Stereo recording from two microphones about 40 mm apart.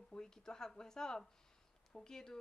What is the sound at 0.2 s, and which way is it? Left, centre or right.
Speech, centre.